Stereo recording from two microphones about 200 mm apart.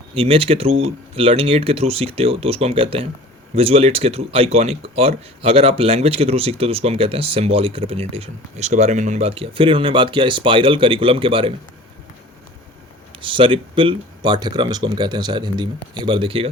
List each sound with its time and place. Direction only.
0.1 s speech: 25° right (ahead or behind)
13.1 s speech: 25° right (ahead or behind)